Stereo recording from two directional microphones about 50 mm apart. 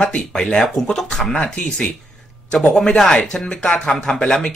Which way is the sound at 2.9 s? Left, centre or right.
Centre.